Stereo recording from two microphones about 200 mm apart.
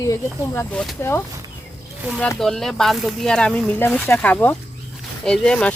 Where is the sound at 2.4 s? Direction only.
Centre (ahead or behind).